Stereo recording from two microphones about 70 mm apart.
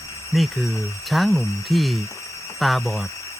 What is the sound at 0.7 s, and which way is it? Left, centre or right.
Speech, left.